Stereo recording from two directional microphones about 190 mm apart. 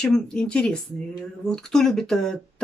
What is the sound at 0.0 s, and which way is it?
Speech, 5° left (ahead or behind).